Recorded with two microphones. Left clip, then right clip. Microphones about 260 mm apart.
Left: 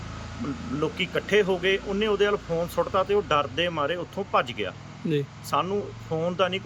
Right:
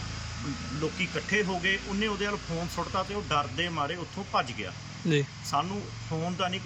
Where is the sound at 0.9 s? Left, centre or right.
Centre.